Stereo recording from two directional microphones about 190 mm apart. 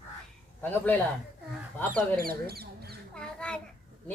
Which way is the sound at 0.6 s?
10° left (ahead or behind).